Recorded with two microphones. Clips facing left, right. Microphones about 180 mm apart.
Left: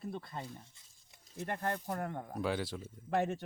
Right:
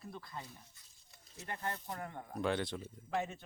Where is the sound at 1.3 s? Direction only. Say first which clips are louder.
Left 5 dB; 55° left (ahead or behind).